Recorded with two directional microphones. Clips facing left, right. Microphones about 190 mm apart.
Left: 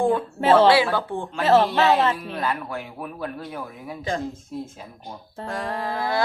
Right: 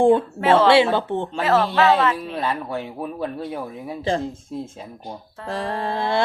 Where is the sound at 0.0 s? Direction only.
30° right (ahead or behind).